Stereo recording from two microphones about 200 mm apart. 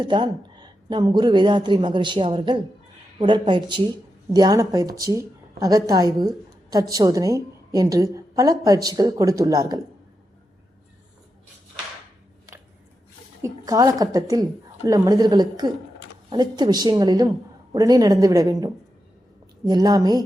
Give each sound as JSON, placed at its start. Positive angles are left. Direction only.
{"t": 0.0, "sound": "a woman's voice", "side_deg": -25}
{"t": 13.4, "sound": "a woman's voice", "side_deg": -15}